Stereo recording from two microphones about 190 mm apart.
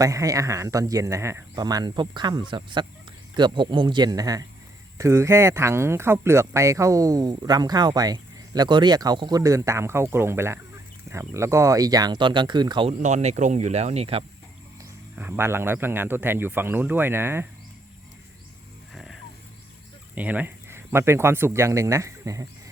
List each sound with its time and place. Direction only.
0.0 s speech: 15° right (ahead or behind)
15.1 s speech: 10° right (ahead or behind)
18.9 s music: centre (ahead or behind)
20.1 s speech: 10° right (ahead or behind)